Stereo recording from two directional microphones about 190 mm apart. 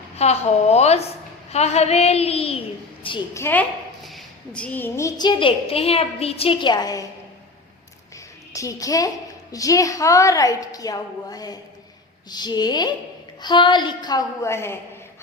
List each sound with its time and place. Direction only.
0.2 s child singing: 35° left (ahead or behind)
3.0 s a woman's voice: 25° left (ahead or behind)
3.3 s a woman's voice: 10° left (ahead or behind)
8.1 s a sound: 15° left (ahead or behind)
9.5 s a woman's voice: 20° left (ahead or behind)